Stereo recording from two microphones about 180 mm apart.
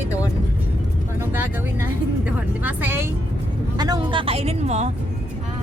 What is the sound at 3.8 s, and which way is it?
Speech, 25° right (ahead or behind).